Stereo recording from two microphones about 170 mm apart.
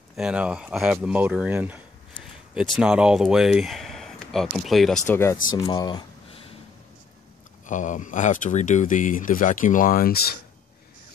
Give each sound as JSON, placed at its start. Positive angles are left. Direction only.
{"t": 0.1, "sound": "speech", "side_deg": -5}
{"t": 5.0, "sound": "speech", "side_deg": 15}
{"t": 7.6, "sound": "speech", "side_deg": 50}